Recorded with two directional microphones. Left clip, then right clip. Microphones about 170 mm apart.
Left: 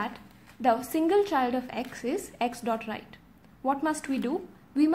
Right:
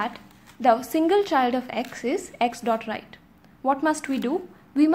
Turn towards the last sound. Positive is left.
turn(degrees=-15)  # may be behind; listen again after turning